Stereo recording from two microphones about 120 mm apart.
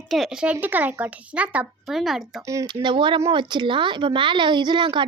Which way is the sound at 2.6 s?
40° right (ahead or behind).